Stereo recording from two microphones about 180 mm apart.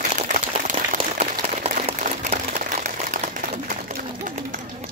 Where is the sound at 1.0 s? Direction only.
30° right (ahead or behind); by 4.6 s 50° right (ahead or behind).